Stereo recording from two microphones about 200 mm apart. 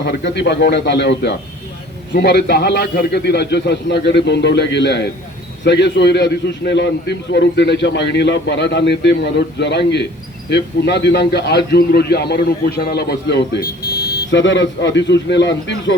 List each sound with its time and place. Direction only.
0.0 s a man's voice: 55° left (ahead or behind)